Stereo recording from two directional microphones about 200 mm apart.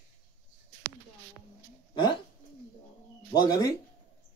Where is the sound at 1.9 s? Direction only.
25° left (ahead or behind).